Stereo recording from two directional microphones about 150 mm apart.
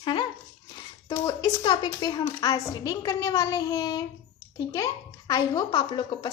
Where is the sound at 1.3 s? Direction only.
30° left (ahead or behind).